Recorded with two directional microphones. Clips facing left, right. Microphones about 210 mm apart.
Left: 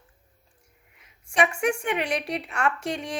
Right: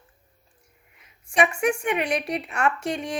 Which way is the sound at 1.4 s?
20° right (ahead or behind).